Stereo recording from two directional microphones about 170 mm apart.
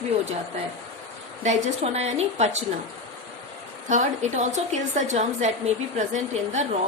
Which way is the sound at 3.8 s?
45° right (ahead or behind).